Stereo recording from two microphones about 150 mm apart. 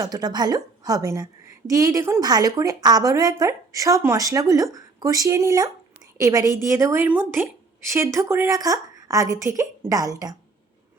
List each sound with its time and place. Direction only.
0.0 s a woman's voice: 25° right (ahead or behind)